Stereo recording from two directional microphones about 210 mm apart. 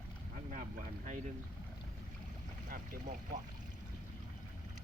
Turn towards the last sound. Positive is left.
turn(degrees=-40)  # may be behind; listen again after turning